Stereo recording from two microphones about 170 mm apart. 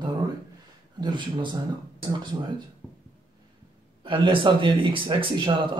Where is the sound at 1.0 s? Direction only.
25° right (ahead or behind).